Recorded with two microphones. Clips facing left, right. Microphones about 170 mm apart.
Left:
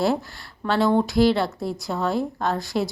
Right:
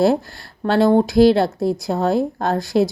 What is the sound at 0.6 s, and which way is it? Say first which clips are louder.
Speech: right 5 dB; 40° right (ahead or behind).